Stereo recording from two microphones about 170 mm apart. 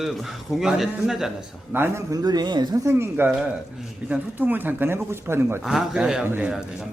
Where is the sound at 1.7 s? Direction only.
15° right (ahead or behind).